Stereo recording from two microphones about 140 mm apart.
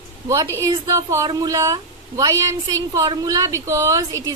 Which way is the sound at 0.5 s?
25° right (ahead or behind).